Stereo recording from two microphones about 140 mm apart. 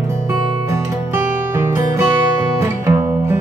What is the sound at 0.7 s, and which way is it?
Music, 15° right (ahead or behind).